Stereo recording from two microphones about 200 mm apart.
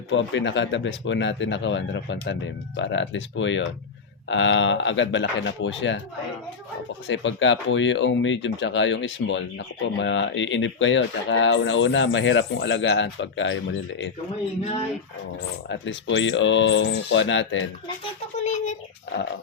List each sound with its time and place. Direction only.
0.1 s speech: 65° left (ahead or behind)
7.1 s speech: 65° left (ahead or behind)
15.7 s speech: 70° left (ahead or behind)
18.4 s speech: 35° left (ahead or behind)